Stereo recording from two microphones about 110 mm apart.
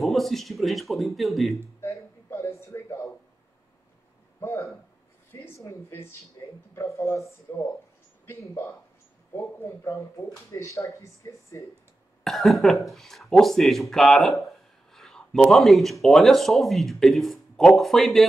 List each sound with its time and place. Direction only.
0.0 s speech: centre (ahead or behind)
1.5 s a sound: 25° left (ahead or behind)
4.4 s speech: 25° left (ahead or behind)
12.2 s speech: centre (ahead or behind)